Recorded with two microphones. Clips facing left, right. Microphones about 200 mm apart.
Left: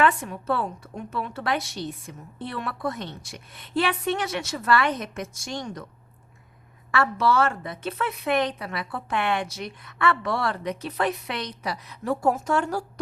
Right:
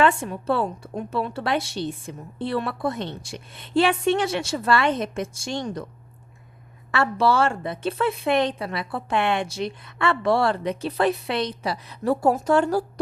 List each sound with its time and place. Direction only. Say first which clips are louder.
0.0 s a woman's voice: right 2 dB; 30° right (ahead or behind)
6.9 s a woman's voice: right 2 dB; 30° right (ahead or behind)